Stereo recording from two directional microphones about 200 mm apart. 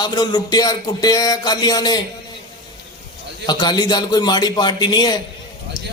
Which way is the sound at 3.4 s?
20° left (ahead or behind).